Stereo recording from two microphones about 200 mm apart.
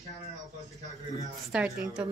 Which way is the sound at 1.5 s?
5° right (ahead or behind).